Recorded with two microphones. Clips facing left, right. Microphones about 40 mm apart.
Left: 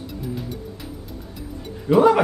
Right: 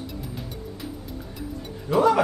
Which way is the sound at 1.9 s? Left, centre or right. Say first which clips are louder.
Left 5 dB; left.